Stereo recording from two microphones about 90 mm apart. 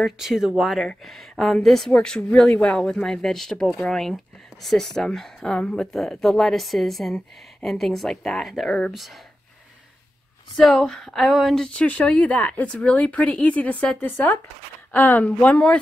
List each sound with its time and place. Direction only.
0.0 s a woman's voice: 5° right (ahead or behind)
10.6 s a woman's voice: 5° left (ahead or behind)